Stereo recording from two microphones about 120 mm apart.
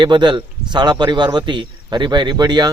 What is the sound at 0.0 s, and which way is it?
Speech, 40° right (ahead or behind).